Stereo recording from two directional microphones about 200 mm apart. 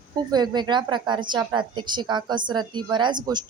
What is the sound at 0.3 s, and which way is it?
Speech, 20° right (ahead or behind).